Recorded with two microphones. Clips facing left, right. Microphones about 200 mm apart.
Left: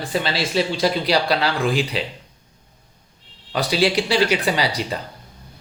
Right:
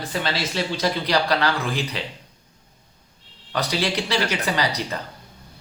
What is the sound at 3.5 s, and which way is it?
Speech, 10° left (ahead or behind).